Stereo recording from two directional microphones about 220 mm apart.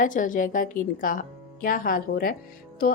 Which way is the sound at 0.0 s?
35° left (ahead or behind).